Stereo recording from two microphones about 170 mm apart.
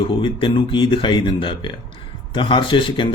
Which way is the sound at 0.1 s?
30° left (ahead or behind).